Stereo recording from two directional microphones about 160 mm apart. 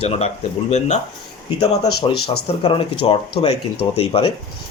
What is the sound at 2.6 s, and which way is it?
Speech, 35° left (ahead or behind).